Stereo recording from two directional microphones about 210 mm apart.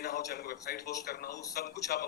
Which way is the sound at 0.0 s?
50° left (ahead or behind).